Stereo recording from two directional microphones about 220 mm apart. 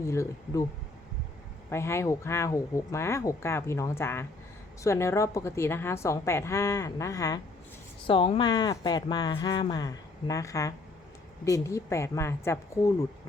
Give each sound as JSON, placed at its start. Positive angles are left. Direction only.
{"t": 0.0, "sound": "speech", "side_deg": 15}
{"t": 1.7, "sound": "speech", "side_deg": 10}